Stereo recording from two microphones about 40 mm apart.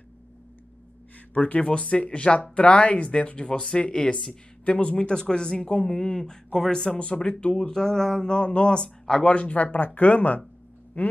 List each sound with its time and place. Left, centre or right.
1.3 s speech: left; by 8.3 s centre
8.3 s speech: left
9.2 s speech: left